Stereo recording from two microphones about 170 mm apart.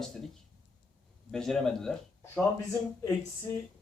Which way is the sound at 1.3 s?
Centre (ahead or behind).